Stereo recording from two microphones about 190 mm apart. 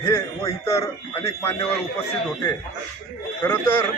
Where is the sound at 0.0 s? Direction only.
15° left (ahead or behind).